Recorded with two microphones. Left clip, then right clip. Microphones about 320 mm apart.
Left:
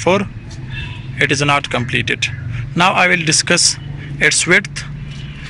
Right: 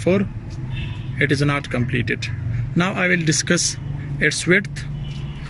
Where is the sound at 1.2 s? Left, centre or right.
Centre.